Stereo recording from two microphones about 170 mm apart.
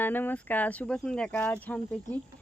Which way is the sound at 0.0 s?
10° left (ahead or behind).